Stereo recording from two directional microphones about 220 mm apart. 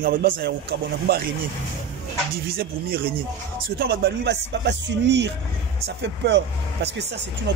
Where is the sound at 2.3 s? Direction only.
45° right (ahead or behind).